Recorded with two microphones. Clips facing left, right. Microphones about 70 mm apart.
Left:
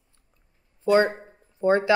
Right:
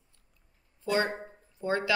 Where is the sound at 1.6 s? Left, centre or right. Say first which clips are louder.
Left 9 dB; left.